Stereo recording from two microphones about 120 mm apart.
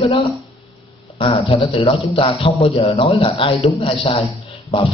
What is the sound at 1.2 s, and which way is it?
A man's voice, 50° left (ahead or behind).